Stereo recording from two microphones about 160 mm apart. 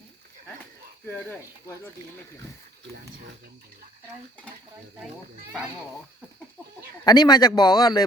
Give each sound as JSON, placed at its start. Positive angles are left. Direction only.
{"t": 1.1, "sound": "speech", "side_deg": 10}
{"t": 7.0, "sound": "speech", "side_deg": 25}